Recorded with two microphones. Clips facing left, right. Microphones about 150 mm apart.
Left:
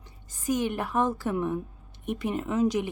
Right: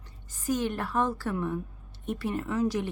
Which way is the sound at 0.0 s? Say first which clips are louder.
Left 2 dB; 15° left (ahead or behind).